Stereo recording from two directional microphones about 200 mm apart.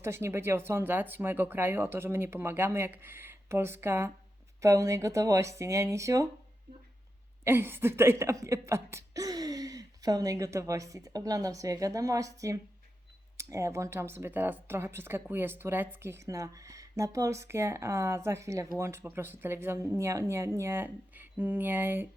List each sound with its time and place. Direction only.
0.0 s speech: 10° right (ahead or behind)
7.4 s speech: 10° right (ahead or behind)